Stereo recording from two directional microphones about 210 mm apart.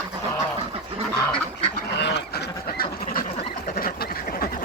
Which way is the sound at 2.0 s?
55° left (ahead or behind).